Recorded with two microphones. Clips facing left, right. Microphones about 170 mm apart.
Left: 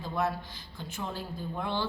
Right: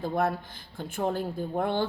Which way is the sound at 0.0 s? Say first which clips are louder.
Right 4 dB; 50° right (ahead or behind).